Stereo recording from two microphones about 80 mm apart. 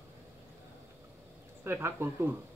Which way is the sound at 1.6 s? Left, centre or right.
Right.